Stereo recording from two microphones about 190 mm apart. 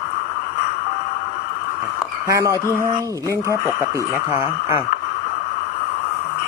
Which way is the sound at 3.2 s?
15° left (ahead or behind).